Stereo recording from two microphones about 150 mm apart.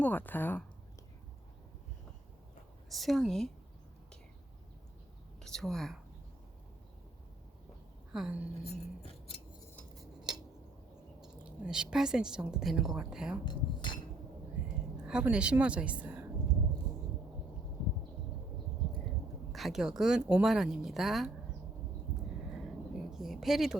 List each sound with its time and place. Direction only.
0.0 s speech: 10° left (ahead or behind)
2.9 s speech: centre (ahead or behind)
5.4 s a woman's voice: 5° left (ahead or behind)
8.1 s speech: 5° right (ahead or behind)
8.7 s scissors: 45° left (ahead or behind)
10.0 s cutlery: 5° right (ahead or behind)
11.2 s speech: 5° right (ahead or behind)
13.4 s cutlery: 30° left (ahead or behind)
15.0 s speech: 5° right (ahead or behind)
19.5 s speech: centre (ahead or behind)
22.4 s a sound: centre (ahead or behind)